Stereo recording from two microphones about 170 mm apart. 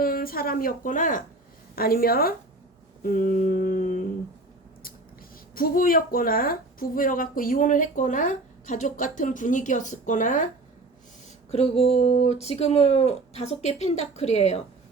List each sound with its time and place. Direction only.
0.0 s a woman's voice: 60° left (ahead or behind)
3.0 s humming: 55° left (ahead or behind)
5.5 s speech: 55° left (ahead or behind)
11.5 s speech: 35° left (ahead or behind)